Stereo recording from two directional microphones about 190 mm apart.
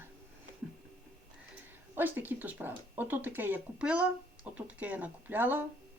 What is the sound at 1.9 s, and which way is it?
Speech, 10° right (ahead or behind).